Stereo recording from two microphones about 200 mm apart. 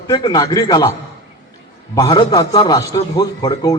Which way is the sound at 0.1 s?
20° left (ahead or behind).